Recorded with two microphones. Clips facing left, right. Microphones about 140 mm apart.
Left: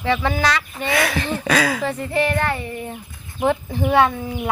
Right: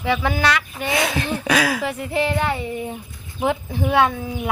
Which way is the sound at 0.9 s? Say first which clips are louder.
Left 1 dB; 20° right (ahead or behind).